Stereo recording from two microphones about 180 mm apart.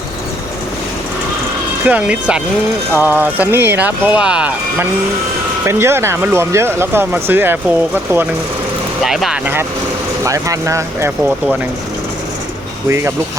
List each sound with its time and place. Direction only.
1.8 s speech: 5° right (ahead or behind)
12.9 s speech: 15° right (ahead or behind)